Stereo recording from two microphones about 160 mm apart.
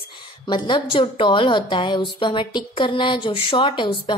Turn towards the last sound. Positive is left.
turn(degrees=30)  # may be behind; listen again after turning